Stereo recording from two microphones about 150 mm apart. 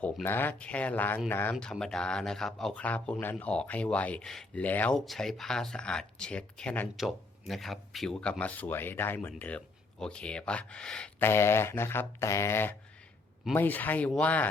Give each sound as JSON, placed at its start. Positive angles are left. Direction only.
{"t": 0.0, "sound": "a man's voice", "side_deg": 10}
{"t": 1.5, "sound": "a man's voice", "side_deg": 5}
{"t": 11.3, "sound": "a man's voice", "side_deg": 15}